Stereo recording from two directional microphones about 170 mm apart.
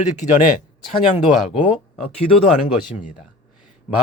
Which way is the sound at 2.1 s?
35° left (ahead or behind).